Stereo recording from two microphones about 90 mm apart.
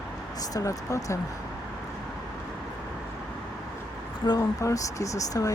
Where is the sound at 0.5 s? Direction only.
40° left (ahead or behind).